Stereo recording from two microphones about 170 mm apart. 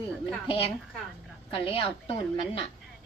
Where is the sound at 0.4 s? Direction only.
35° left (ahead or behind).